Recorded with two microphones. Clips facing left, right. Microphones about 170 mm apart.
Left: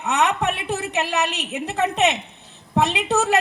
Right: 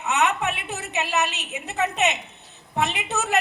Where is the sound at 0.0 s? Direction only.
60° left (ahead or behind).